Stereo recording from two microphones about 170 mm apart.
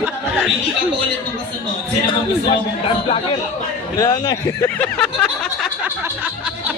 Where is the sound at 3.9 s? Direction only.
25° left (ahead or behind).